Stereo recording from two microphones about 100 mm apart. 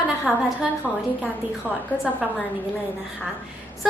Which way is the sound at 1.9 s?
15° left (ahead or behind).